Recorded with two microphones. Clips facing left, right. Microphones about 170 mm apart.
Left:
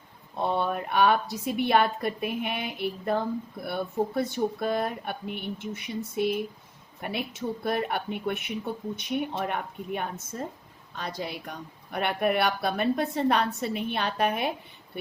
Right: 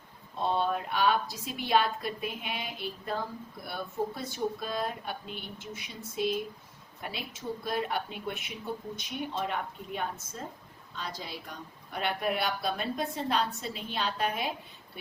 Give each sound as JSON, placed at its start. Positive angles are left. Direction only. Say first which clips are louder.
{"t": 0.4, "sound": "speech", "louder": "left 2 dB", "side_deg": 60}